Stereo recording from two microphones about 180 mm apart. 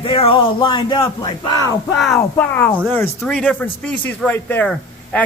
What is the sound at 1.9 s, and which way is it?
Speech, centre (ahead or behind).